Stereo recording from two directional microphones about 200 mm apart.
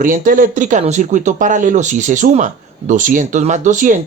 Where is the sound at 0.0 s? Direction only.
40° right (ahead or behind).